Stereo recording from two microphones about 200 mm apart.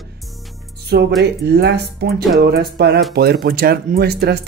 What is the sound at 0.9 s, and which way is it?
Speech, 55° right (ahead or behind).